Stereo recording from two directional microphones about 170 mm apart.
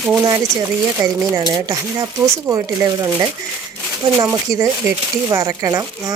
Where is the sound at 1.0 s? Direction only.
25° right (ahead or behind).